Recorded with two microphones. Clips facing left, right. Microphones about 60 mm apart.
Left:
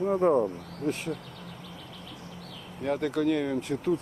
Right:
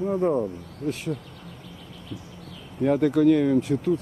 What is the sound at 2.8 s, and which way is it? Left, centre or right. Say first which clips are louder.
Speech: right 8 dB; centre.